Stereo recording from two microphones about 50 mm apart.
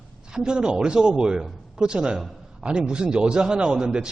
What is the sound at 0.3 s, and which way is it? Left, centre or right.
A man's voice, centre.